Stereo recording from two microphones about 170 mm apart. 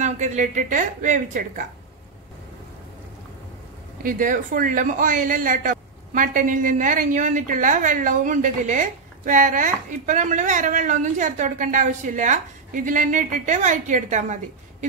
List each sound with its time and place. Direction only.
0.0 s a man's voice: 45° right (ahead or behind)
4.0 s a man's voice: 50° right (ahead or behind)